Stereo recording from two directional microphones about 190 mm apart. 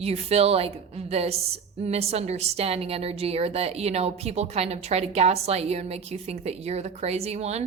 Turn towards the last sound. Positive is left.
turn(degrees=-35)  # may be behind; listen again after turning